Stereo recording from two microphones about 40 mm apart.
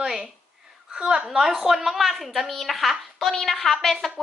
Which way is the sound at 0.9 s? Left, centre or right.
Right.